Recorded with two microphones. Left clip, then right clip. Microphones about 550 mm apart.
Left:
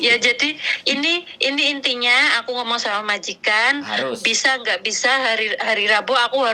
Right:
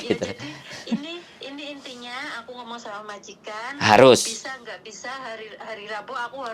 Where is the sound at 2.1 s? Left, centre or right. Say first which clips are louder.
Left 16 dB; left.